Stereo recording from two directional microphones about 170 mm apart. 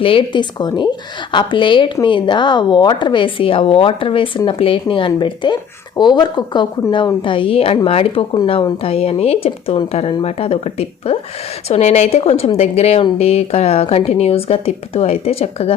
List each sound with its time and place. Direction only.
0.0 s a woman's voice: 30° left (ahead or behind)